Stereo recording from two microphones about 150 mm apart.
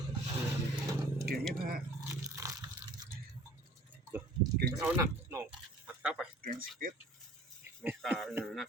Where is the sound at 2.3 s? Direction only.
20° right (ahead or behind).